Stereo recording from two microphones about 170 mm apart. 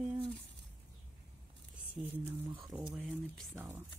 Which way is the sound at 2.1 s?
10° right (ahead or behind).